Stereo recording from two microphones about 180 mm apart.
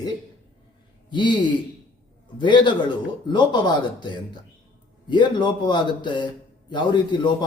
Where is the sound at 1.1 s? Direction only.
25° left (ahead or behind).